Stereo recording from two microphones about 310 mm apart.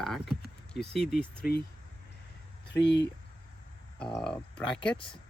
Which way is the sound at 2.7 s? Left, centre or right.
Left.